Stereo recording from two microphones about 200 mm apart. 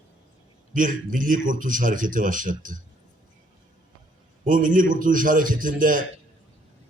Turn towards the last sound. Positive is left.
turn(degrees=-45)  # may be behind; listen again after turning